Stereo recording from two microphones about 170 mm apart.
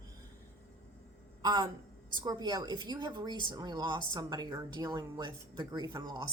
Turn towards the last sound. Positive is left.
turn(degrees=-25)  # may be behind; listen again after turning